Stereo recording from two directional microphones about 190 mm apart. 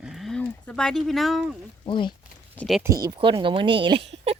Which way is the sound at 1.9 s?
25° left (ahead or behind).